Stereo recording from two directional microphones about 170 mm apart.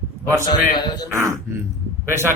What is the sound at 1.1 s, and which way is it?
Speech, 15° right (ahead or behind).